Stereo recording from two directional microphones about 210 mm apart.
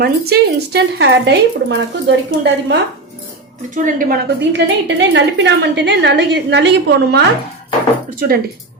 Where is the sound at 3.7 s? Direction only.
40° right (ahead or behind).